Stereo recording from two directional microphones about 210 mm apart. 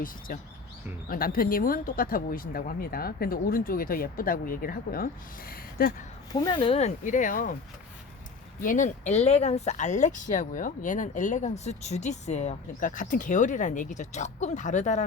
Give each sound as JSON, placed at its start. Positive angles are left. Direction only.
{"t": 1.1, "sound": "speech", "side_deg": 45}
{"t": 6.4, "sound": "speech", "side_deg": 20}
{"t": 8.6, "sound": "speech", "side_deg": 35}